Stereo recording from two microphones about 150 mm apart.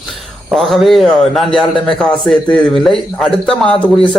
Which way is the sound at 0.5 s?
Centre (ahead or behind).